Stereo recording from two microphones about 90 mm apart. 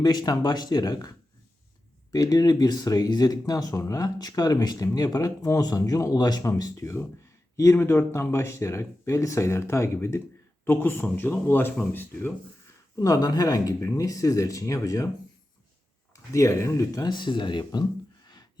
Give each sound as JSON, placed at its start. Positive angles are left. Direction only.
{"t": 0.0, "sound": "speech", "side_deg": 50}
{"t": 2.1, "sound": "speech", "side_deg": 40}
{"t": 6.4, "sound": "speech", "side_deg": 35}
{"t": 13.0, "sound": "speech", "side_deg": 45}
{"t": 16.3, "sound": "speech", "side_deg": 35}
{"t": 17.1, "sound": "speech", "side_deg": 60}
{"t": 18.3, "sound": "gasp", "side_deg": 50}